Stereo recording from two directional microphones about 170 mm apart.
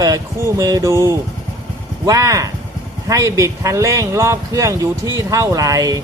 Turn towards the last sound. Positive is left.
turn(degrees=-20)  # may be behind; listen again after turning